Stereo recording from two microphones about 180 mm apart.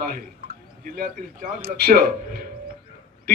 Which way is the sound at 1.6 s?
55° right (ahead or behind).